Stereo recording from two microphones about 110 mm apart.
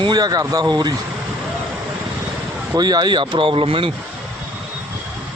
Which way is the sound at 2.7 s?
40° right (ahead or behind).